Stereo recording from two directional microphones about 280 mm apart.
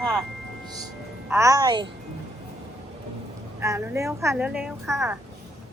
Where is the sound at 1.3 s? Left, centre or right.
Centre.